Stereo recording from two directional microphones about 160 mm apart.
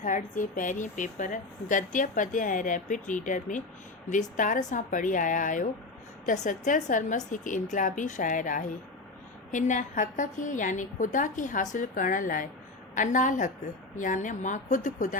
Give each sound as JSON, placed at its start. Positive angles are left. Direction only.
{"t": 0.0, "sound": "speech", "side_deg": 55}